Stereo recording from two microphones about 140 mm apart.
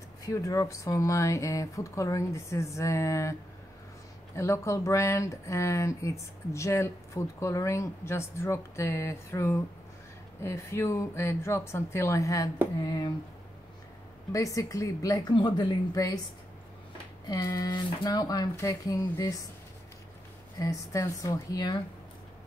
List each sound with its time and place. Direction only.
0.2 s speech: 25° left (ahead or behind)
4.4 s speech: 20° left (ahead or behind)
14.3 s speech: 25° left (ahead or behind)
17.3 s speech: 25° left (ahead or behind)
20.5 s speech: 25° left (ahead or behind)